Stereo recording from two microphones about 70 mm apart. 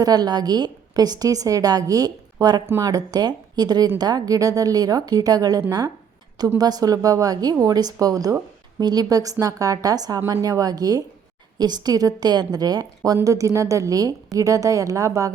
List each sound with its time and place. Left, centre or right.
0.0 s a woman's voice: right
7.6 s a woman's voice: right
8.8 s a woman's voice: right
11.5 s a woman's voice: right
13.2 s a woman's voice: right